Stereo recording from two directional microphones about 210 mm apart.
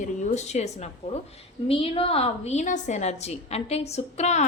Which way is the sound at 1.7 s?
25° left (ahead or behind).